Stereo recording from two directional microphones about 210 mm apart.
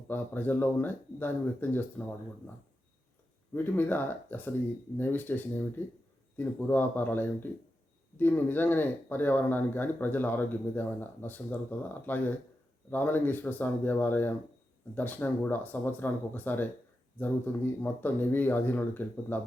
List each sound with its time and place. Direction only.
0.1 s speech: 10° left (ahead or behind)
3.5 s speech: 10° left (ahead or behind)